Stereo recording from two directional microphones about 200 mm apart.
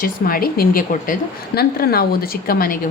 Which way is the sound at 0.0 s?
45° left (ahead or behind).